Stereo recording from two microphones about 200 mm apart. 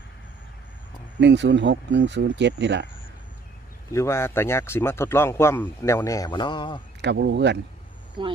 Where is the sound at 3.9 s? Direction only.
15° left (ahead or behind).